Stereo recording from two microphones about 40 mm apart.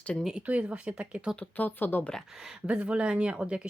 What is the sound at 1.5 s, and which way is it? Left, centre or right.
Speech, left.